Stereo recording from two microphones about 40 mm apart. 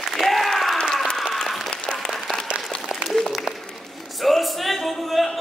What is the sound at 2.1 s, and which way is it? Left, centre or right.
Applause, centre.